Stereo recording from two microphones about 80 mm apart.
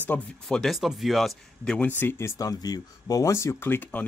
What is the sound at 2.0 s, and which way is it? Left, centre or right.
Speech, left.